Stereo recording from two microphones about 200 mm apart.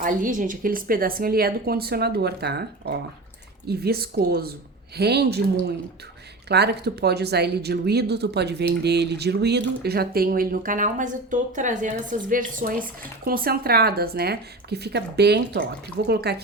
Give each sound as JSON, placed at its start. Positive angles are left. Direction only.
{"t": 0.0, "sound": "a woman's voice", "side_deg": -40}
{"t": 6.5, "sound": "a woman's voice", "side_deg": -55}